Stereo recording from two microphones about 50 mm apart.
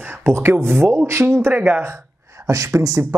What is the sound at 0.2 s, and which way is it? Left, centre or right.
Speech, right.